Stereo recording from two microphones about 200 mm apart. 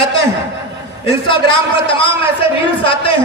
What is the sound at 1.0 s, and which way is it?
A man's voice, 25° left (ahead or behind).